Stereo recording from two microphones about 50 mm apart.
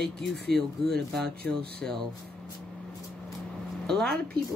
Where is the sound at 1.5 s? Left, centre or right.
Left.